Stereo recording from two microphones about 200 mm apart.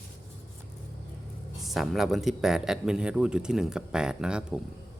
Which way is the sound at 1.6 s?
Centre (ahead or behind).